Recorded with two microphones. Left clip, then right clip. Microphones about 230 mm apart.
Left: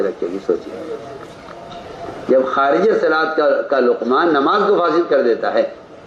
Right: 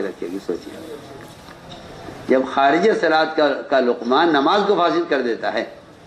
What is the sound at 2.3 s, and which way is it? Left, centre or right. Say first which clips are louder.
A man's voice: left 2 dB; right.